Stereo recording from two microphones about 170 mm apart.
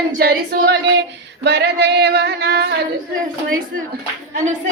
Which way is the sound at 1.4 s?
85° right.